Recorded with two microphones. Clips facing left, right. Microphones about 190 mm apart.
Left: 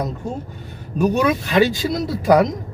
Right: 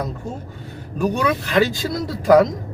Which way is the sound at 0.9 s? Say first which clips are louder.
Left 3 dB; 20° left (ahead or behind).